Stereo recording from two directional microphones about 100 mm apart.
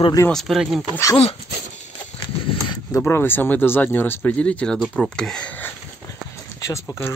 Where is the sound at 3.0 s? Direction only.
20° left (ahead or behind).